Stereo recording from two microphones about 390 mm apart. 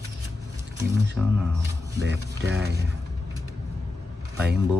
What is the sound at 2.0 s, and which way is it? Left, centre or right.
Speech, right.